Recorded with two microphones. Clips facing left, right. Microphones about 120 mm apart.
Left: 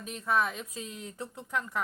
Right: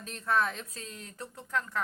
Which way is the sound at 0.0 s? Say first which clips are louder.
Even; 10° left (ahead or behind).